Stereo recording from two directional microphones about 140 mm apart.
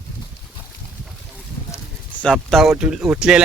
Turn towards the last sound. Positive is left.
turn(degrees=-5)  # may be behind; listen again after turning